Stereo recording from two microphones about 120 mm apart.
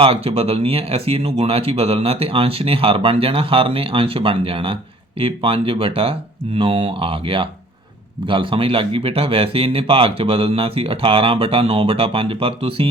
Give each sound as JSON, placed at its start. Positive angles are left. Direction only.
{"t": 0.0, "sound": "speech", "side_deg": -55}